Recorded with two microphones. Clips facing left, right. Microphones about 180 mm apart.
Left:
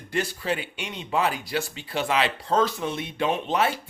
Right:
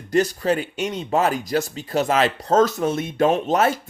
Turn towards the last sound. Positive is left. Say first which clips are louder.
# right 5 dB
turn(degrees=-45)  # may be behind; listen again after turning